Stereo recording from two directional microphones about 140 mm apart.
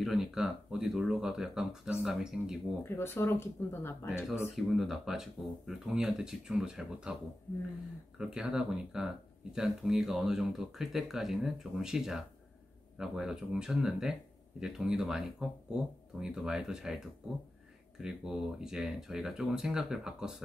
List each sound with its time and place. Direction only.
0.0 s speech: centre (ahead or behind)
2.8 s speech: 15° left (ahead or behind)
4.6 s speech: centre (ahead or behind)
8.2 s speech: 5° right (ahead or behind)